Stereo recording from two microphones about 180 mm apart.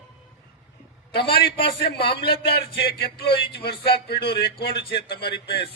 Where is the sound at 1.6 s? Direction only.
65° left (ahead or behind).